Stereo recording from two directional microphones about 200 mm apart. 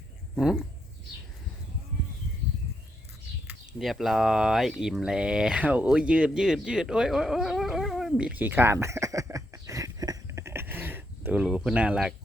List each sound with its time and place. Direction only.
0.3 s speech: centre (ahead or behind)
3.7 s speech: centre (ahead or behind)